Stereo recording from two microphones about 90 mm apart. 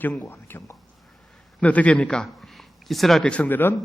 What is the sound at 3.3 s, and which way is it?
Speech, 15° left (ahead or behind).